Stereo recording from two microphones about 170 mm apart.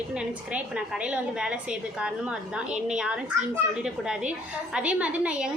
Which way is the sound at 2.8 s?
5° right (ahead or behind).